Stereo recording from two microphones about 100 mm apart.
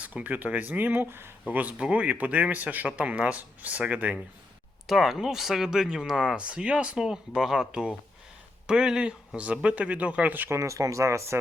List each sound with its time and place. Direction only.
0.0 s speech: 15° right (ahead or behind)
10.6 s speech: 30° right (ahead or behind)